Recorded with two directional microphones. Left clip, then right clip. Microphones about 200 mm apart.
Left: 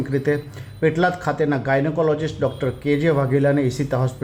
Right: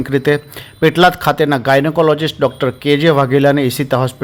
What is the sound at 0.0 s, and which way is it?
A man's voice, 25° right (ahead or behind).